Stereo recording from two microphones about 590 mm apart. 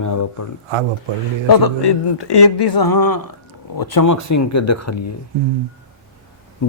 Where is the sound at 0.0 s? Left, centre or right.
Left.